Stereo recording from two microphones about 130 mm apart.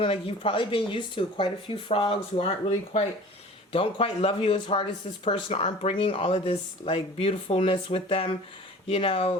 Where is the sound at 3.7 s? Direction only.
45° left (ahead or behind).